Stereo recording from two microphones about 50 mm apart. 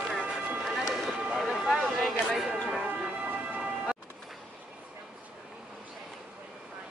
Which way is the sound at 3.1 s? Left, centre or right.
Right.